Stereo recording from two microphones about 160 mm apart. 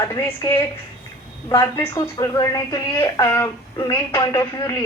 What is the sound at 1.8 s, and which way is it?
A woman's voice, 20° left (ahead or behind).